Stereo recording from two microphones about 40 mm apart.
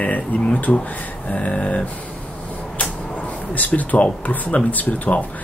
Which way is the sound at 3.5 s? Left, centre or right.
Left.